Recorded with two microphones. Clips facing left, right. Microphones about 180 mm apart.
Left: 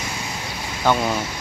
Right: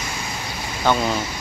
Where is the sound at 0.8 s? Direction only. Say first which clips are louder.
Even; 10° left (ahead or behind).